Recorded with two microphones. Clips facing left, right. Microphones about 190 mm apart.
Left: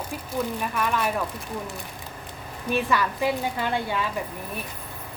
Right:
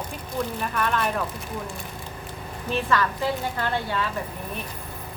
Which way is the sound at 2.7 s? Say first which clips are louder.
Even; 10° left (ahead or behind).